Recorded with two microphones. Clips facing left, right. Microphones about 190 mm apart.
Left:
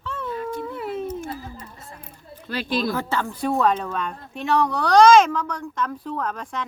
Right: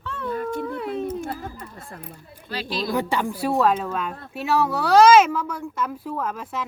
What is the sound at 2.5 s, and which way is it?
Speech, 50° left (ahead or behind).